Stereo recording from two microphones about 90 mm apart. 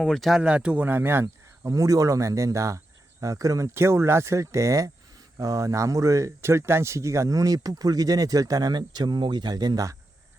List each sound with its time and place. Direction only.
0.0 s speech: centre (ahead or behind); by 10.0 s 40° right (ahead or behind)